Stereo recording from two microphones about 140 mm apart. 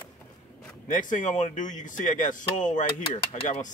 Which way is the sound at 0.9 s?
65° left (ahead or behind).